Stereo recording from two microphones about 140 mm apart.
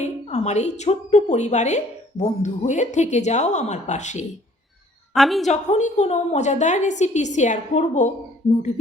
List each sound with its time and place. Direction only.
0.0 s a woman's voice: 55° left (ahead or behind)
5.1 s a woman's voice: centre (ahead or behind)
5.5 s a woman's voice: 55° left (ahead or behind)